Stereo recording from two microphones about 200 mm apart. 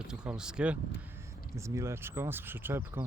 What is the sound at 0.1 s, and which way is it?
Speech, 5° right (ahead or behind).